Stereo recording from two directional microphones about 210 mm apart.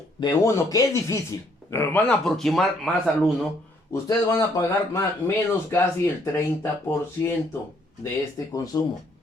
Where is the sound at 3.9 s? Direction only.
15° left (ahead or behind).